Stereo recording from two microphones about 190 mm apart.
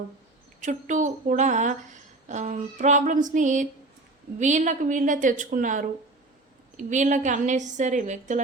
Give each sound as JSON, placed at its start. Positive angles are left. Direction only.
{"t": 0.6, "sound": "a woman's voice", "side_deg": -40}